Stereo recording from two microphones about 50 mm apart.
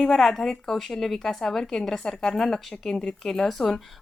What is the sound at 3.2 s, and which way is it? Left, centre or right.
Speech, centre.